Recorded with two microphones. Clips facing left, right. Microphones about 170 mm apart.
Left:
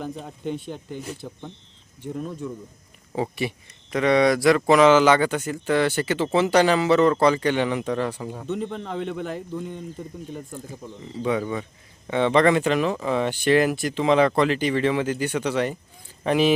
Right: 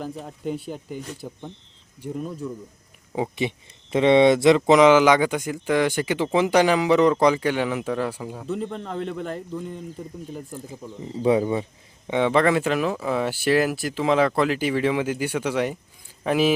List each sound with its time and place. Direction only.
0.0 s speech: centre (ahead or behind)
3.2 s speech: 20° right (ahead or behind)
11.2 s speech: 30° right (ahead or behind)
12.0 s speech: 10° right (ahead or behind)